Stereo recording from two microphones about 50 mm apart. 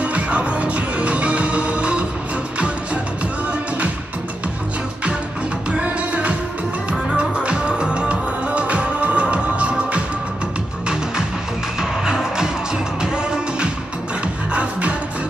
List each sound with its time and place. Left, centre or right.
0.0 s music: right
5.7 s music: right
11.8 s music: centre